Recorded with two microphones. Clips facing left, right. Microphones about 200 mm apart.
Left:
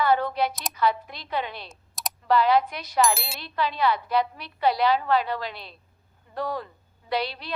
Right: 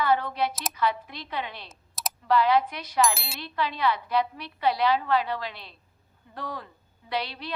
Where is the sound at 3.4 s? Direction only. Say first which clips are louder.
Left 2 dB; 40° left (ahead or behind).